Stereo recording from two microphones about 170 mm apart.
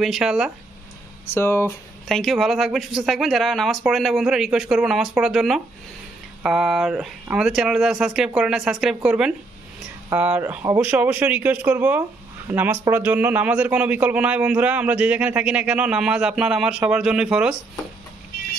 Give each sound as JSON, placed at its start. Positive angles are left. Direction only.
{"t": 0.0, "sound": "speech", "side_deg": 0}
{"t": 1.2, "sound": "speech", "side_deg": 15}
{"t": 2.0, "sound": "a man's voice", "side_deg": 0}